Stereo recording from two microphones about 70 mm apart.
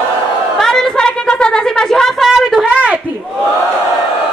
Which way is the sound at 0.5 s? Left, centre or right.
Centre.